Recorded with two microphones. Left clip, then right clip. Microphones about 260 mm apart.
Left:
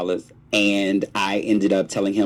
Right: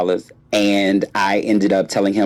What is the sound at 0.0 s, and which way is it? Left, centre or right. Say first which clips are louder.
Speech: right 6 dB; right.